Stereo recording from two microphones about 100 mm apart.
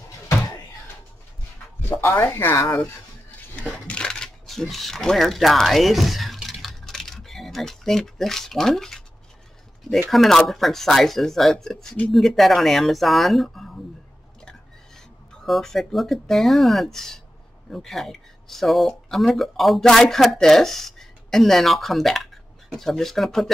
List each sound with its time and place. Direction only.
1.8 s speech: 25° left (ahead or behind)
3.5 s a sound: 10° left (ahead or behind)
10.0 s speech: centre (ahead or behind)